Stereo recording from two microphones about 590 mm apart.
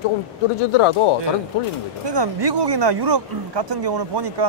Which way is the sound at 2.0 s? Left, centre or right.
Right.